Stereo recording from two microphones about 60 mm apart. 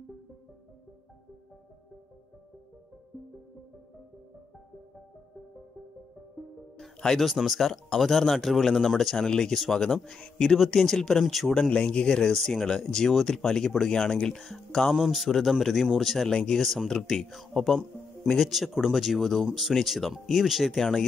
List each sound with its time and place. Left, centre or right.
7.0 s speech: centre
7.2 s speech: centre
11.5 s speech: centre